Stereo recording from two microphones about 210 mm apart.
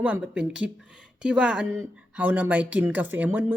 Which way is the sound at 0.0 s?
5° right (ahead or behind).